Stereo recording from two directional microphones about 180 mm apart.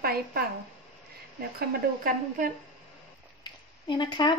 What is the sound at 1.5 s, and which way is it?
Speech, 50° right (ahead or behind).